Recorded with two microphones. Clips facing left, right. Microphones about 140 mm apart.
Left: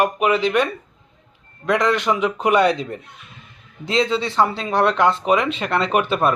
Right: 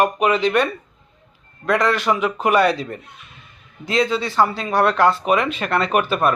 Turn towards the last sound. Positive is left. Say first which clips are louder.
# even
turn(degrees=20)  # may be behind; listen again after turning